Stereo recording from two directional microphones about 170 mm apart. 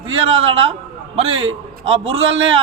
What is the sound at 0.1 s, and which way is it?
A man's voice, 30° right (ahead or behind).